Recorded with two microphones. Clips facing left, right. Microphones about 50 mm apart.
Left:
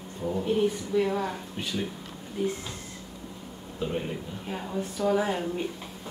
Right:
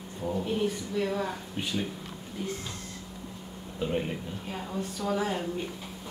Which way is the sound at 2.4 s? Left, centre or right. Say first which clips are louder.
Left 6 dB; centre.